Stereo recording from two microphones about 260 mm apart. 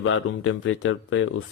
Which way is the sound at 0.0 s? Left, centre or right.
Left.